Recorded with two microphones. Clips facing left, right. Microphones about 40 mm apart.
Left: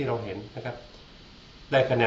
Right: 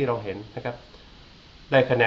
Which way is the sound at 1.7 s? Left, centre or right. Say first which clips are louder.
Right 3 dB; centre.